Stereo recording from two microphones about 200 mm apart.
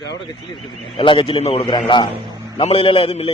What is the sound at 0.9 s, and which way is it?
A man's voice, 25° left (ahead or behind).